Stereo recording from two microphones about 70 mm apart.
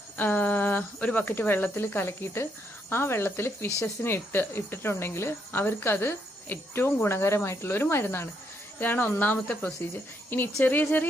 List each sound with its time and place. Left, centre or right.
0.2 s speech: left